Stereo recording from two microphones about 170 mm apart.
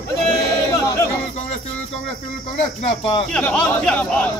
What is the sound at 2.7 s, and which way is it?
Speech, 35° left (ahead or behind).